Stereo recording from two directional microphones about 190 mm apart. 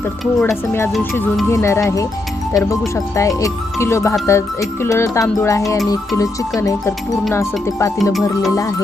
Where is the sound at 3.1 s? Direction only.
15° left (ahead or behind).